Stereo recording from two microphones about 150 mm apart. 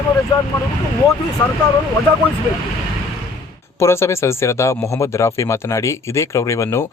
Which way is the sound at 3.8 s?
20° left (ahead or behind).